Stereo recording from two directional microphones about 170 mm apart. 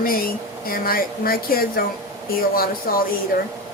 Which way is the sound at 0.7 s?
60° left (ahead or behind).